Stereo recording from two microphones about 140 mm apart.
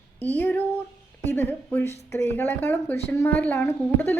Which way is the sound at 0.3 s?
15° left (ahead or behind).